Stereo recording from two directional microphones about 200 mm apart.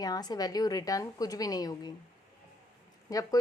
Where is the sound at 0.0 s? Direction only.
20° left (ahead or behind).